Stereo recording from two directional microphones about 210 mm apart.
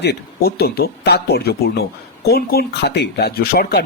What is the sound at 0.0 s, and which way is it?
Speech, 50° left (ahead or behind).